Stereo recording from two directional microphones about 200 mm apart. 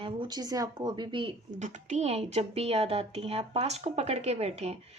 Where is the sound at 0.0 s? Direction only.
20° right (ahead or behind).